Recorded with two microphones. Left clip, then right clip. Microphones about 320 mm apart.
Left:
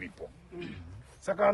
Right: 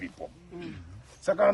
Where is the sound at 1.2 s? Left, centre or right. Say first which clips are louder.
Right 3 dB; centre.